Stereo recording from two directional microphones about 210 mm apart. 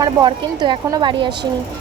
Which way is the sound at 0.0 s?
20° right (ahead or behind).